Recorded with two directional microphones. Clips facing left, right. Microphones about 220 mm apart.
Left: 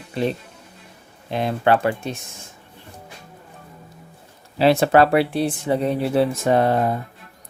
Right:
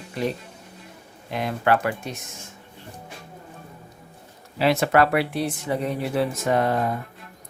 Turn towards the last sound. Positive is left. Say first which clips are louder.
# left 4 dB
turn(degrees=30)  # may be behind; listen again after turning